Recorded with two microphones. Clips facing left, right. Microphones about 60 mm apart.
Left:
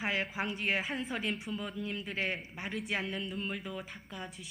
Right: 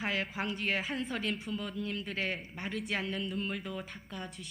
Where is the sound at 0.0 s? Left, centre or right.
Centre.